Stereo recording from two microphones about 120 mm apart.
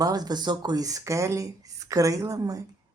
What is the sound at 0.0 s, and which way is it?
Speech, 35° right (ahead or behind).